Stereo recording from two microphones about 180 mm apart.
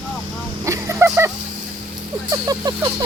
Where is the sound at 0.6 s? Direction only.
15° right (ahead or behind).